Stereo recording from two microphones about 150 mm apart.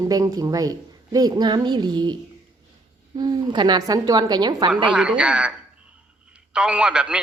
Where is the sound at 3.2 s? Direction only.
30° right (ahead or behind).